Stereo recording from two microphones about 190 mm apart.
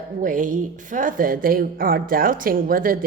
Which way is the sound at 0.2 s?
45° right (ahead or behind).